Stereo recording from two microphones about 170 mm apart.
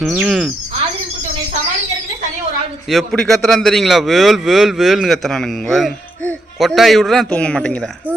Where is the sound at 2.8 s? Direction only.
Centre (ahead or behind).